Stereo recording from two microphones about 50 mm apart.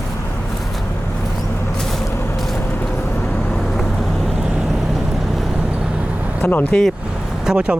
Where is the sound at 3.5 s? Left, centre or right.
Centre.